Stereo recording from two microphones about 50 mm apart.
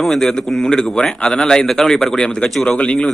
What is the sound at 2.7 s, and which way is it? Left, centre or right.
Speech, left.